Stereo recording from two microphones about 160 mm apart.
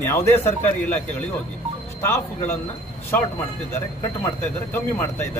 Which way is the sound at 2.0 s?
15° left (ahead or behind).